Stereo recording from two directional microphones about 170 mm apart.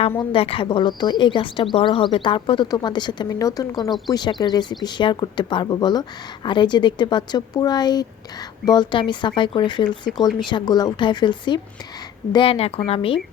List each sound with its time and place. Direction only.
0.2 s speech: 30° left (ahead or behind)